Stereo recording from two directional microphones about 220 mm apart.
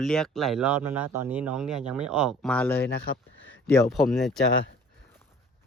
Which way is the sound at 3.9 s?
Centre (ahead or behind).